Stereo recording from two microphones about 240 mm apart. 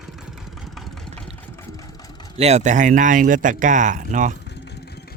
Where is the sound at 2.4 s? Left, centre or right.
Right.